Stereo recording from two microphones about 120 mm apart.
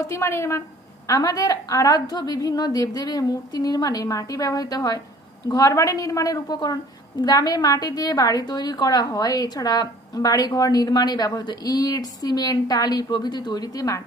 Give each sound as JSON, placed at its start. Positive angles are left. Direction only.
{"t": 0.0, "sound": "a woman's voice", "side_deg": 25}